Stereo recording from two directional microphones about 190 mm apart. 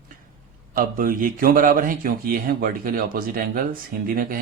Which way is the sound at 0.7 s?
45° right (ahead or behind).